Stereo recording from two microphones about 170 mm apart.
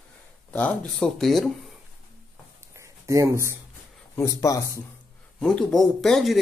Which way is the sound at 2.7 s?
15° right (ahead or behind).